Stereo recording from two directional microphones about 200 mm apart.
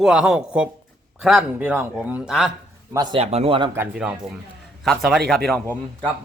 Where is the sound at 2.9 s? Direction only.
20° right (ahead or behind).